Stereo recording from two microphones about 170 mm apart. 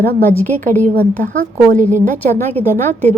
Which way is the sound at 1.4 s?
45° right (ahead or behind).